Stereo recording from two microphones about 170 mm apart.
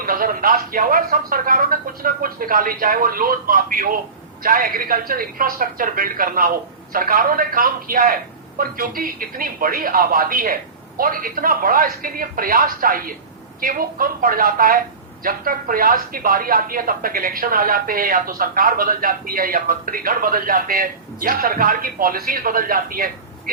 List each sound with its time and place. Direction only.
0.0 s speech: 55° right (ahead or behind)